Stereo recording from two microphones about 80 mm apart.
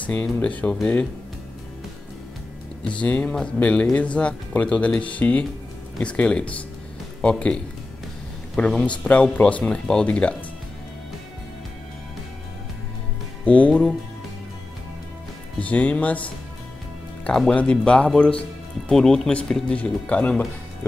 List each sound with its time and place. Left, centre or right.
0.0 s speech: centre
2.8 s speech: centre
13.5 s speech: centre
15.6 s speech: centre